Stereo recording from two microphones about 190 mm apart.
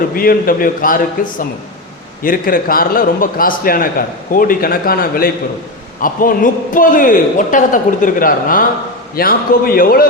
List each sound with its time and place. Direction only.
0.1 s a man's voice: 50° left (ahead or behind)